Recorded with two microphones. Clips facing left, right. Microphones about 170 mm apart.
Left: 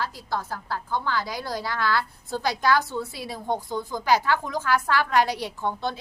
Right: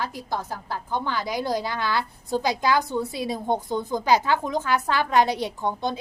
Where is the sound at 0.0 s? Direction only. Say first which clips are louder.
Even; 20° right (ahead or behind).